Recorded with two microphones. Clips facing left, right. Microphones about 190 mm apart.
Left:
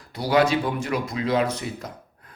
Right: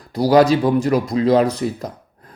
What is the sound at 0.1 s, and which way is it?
Speech, 40° right (ahead or behind).